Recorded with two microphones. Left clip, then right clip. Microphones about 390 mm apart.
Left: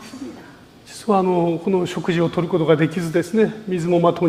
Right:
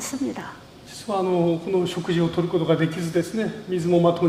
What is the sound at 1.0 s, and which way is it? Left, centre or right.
A man's voice, left.